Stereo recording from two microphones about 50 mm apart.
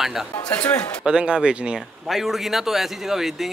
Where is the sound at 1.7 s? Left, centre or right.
Centre.